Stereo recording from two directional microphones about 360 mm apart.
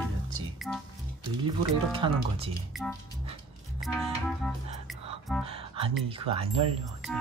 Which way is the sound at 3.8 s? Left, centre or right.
Centre.